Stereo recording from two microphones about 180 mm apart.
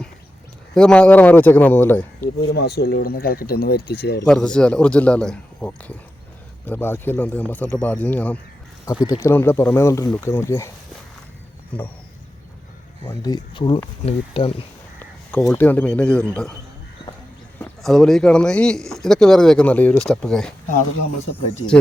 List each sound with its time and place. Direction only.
0.7 s speech: 5° left (ahead or behind)
2.5 s speech: 65° left (ahead or behind)
4.3 s speech: 5° left (ahead or behind)
13.1 s speech: 20° left (ahead or behind)
14.9 s speech: 15° left (ahead or behind)
17.8 s speech: centre (ahead or behind)
20.7 s speech: 45° left (ahead or behind)